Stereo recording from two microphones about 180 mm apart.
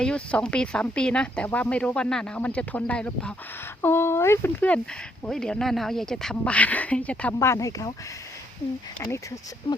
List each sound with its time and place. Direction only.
0.0 s speech: 5° left (ahead or behind)
9.0 s speech: 15° left (ahead or behind)